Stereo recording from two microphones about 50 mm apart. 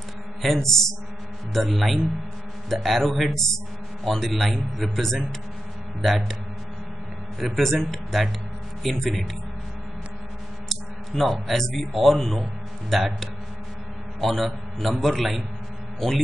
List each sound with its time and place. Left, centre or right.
0.4 s a sound: centre
1.5 s a man's voice: centre
7.3 s a man's voice: centre
10.7 s a man's voice: centre